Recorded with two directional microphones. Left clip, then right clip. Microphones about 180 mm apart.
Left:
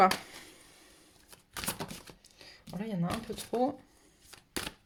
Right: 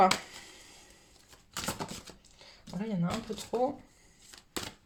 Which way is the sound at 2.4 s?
45° left (ahead or behind).